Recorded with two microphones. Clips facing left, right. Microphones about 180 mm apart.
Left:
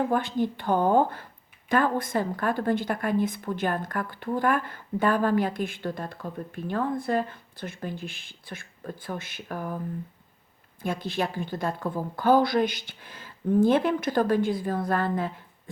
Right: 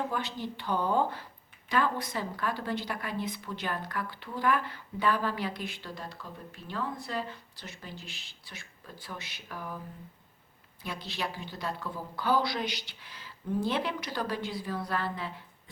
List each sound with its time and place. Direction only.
0.1 s speech: 50° left (ahead or behind)
10.8 s speech: 50° left (ahead or behind)